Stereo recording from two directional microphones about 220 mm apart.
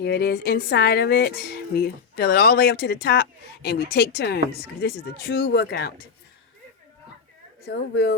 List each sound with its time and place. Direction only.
0.0 s speech: 50° left (ahead or behind)
7.7 s speech: 50° left (ahead or behind)